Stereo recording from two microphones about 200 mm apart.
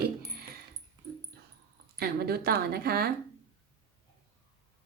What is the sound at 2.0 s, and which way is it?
A woman's voice, 50° right (ahead or behind).